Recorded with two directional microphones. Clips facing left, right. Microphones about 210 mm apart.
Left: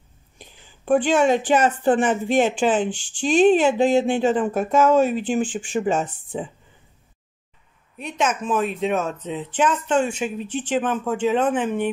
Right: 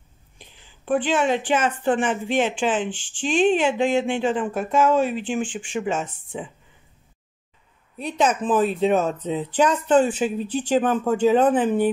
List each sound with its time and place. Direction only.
0.4 s a woman's voice: 45° left (ahead or behind)
8.0 s speech: 35° right (ahead or behind)